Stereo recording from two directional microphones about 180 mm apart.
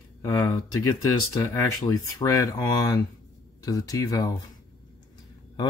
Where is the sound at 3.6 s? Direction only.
20° left (ahead or behind).